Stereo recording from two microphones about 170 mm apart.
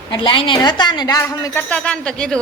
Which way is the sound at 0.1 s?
30° left (ahead or behind).